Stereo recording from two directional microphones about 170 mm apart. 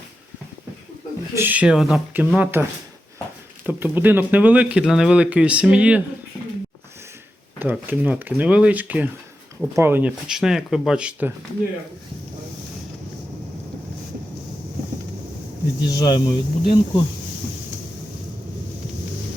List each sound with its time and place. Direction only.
1.4 s speech: 10° right (ahead or behind)
3.7 s speech: 10° right (ahead or behind)
7.6 s speech: 10° right (ahead or behind)
15.8 s speech: 25° left (ahead or behind)